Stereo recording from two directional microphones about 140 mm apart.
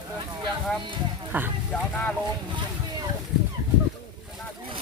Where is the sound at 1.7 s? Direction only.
10° left (ahead or behind).